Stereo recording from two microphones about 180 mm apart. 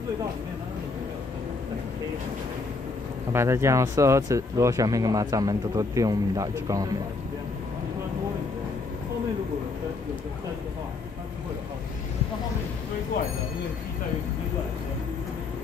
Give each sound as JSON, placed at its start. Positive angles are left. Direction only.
{"t": 3.3, "sound": "speech", "side_deg": -15}